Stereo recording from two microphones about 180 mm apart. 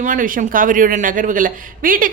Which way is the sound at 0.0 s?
45° right (ahead or behind).